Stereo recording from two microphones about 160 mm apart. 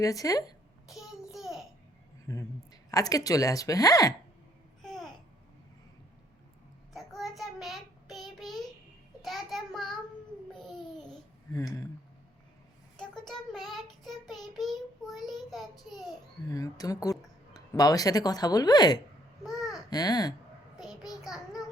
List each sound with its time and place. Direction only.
0.0 s speech: 20° left (ahead or behind)
0.9 s a sound: centre (ahead or behind)
2.2 s a sound: 20° left (ahead or behind)
2.9 s speech: 20° left (ahead or behind)
4.8 s babbling: centre (ahead or behind)
6.9 s child singing: centre (ahead or behind)
10.5 s babbling: centre (ahead or behind)
11.5 s a sound: 20° left (ahead or behind)
13.0 s child singing: 5° left (ahead or behind)
15.8 s babbling: centre (ahead or behind)
16.5 s speech: 20° left (ahead or behind)
19.4 s babbling: centre (ahead or behind)
19.9 s speech: 25° left (ahead or behind)
20.7 s child singing: 5° right (ahead or behind)